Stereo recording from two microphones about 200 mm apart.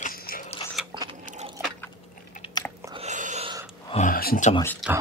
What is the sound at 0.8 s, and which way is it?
Biting, centre (ahead or behind).